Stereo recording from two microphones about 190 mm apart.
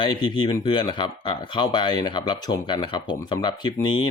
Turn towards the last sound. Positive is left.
turn(degrees=25)  # may be behind; listen again after turning